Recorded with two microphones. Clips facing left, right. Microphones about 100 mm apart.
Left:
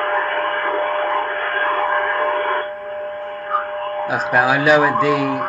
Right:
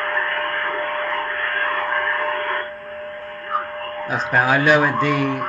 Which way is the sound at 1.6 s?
40° left (ahead or behind).